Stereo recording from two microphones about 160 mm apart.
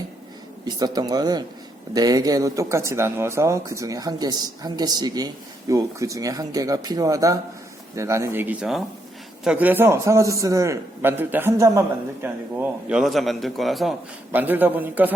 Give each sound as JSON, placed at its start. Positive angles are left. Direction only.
{"t": 0.6, "sound": "a man's voice", "side_deg": -25}
{"t": 14.3, "sound": "a man's voice", "side_deg": -10}